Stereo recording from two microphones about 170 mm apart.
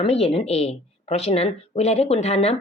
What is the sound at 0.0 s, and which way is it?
Speech, 35° left (ahead or behind).